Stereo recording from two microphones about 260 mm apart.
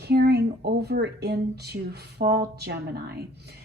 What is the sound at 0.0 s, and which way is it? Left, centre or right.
A woman's voice, right.